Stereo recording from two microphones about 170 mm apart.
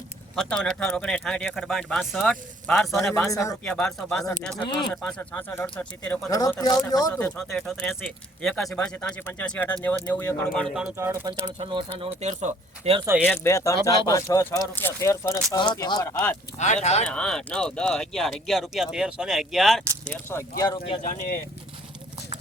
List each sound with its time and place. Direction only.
0.3 s speech: 5° left (ahead or behind)
6.3 s speech: 20° left (ahead or behind)
7.1 s speech: 10° left (ahead or behind)
10.9 s speech: 15° right (ahead or behind)
11.3 s speech: 25° right (ahead or behind)
12.0 s speech: 40° right (ahead or behind)
13.2 s speech: 10° left (ahead or behind)
16.6 s speech: 45° left (ahead or behind)
17.1 s speech: 5° left (ahead or behind)
20.6 s speech: 25° left (ahead or behind)
21.0 s speech: 45° left (ahead or behind)